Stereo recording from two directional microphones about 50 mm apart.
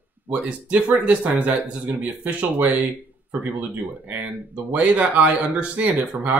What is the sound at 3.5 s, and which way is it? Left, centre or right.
Speech, right.